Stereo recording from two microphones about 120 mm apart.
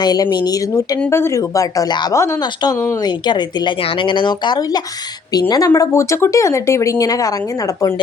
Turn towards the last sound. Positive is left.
turn(degrees=30)  # may be behind; listen again after turning